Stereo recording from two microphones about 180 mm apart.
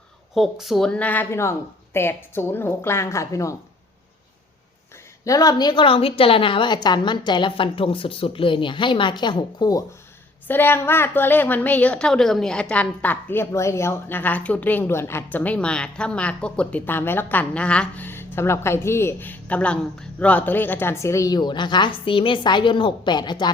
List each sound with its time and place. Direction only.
0.3 s a woman's voice: centre (ahead or behind); by 3.5 s 15° left (ahead or behind)
5.2 s a woman's voice: 20° left (ahead or behind)